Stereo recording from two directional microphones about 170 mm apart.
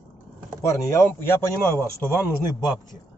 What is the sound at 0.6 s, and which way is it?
Speech, 15° left (ahead or behind).